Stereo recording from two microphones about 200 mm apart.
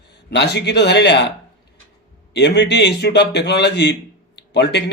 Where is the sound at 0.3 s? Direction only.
60° left (ahead or behind).